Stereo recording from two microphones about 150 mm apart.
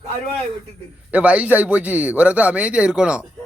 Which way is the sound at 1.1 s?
10° right (ahead or behind).